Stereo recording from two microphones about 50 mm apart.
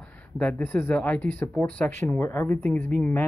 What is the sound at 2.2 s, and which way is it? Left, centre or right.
Speech, left.